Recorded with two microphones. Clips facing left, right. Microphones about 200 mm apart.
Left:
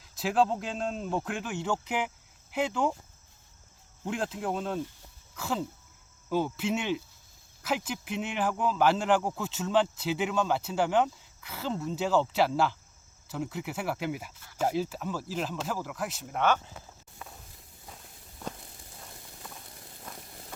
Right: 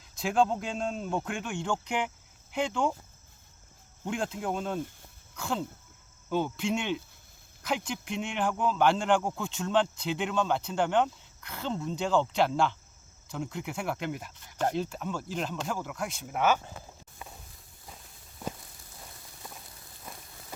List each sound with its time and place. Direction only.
0.0 s speech: centre (ahead or behind)
4.0 s speech: centre (ahead or behind)
17.2 s a sound: 5° right (ahead or behind)